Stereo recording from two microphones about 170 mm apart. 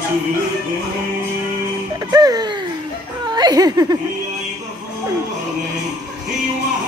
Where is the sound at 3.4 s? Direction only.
20° right (ahead or behind).